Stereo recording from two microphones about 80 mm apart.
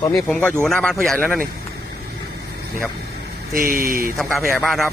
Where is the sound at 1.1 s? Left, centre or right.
Centre.